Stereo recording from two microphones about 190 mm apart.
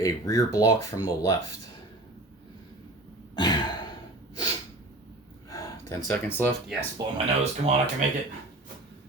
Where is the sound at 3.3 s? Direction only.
20° left (ahead or behind).